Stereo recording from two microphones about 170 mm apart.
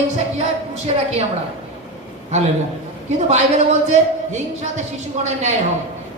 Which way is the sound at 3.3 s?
45° right (ahead or behind).